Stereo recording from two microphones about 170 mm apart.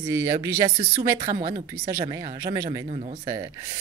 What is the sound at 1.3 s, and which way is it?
Speech, 30° right (ahead or behind).